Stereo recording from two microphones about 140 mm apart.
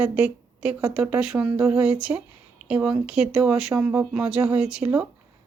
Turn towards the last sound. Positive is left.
turn(degrees=-5)  # may be behind; listen again after turning